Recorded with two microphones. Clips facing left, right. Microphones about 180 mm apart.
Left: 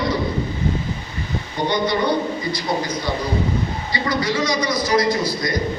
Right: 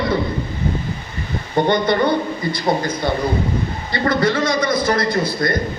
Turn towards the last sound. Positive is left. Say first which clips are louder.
# right 2 dB
turn(degrees=-55)  # may be behind; listen again after turning